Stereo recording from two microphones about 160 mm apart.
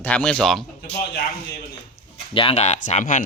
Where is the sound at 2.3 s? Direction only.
40° left (ahead or behind).